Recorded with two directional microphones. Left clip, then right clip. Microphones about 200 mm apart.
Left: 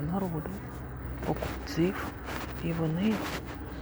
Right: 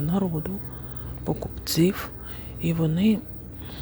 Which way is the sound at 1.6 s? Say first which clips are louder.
Right 8 dB; 55° right (ahead or behind).